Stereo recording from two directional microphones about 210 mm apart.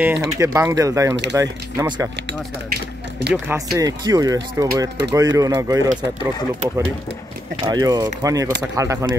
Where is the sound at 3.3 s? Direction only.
10° right (ahead or behind).